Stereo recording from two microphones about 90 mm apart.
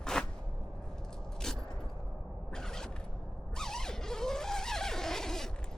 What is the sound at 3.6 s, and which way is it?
Zipper, 5° left (ahead or behind).